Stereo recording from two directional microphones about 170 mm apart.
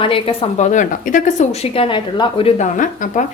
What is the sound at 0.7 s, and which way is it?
Speech, 50° left (ahead or behind).